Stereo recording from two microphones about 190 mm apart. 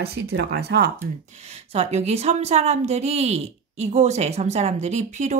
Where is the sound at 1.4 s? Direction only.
35° right (ahead or behind).